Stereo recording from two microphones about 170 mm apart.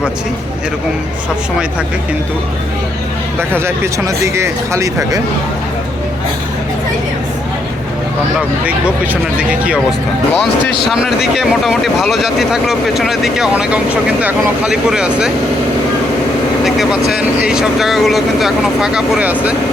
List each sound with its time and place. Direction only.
3.5 s speech: 15° right (ahead or behind)
9.4 s speech: 5° right (ahead or behind)
10.8 s speech: 5° right (ahead or behind)
16.6 s speech: centre (ahead or behind)